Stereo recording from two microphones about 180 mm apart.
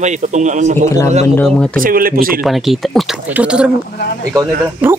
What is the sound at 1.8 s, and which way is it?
Speech, 55° right (ahead or behind).